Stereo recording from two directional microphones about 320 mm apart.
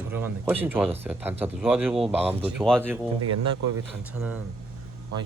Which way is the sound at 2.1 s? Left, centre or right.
Centre.